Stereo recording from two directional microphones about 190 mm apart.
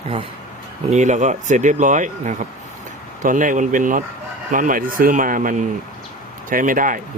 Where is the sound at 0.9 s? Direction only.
40° right (ahead or behind).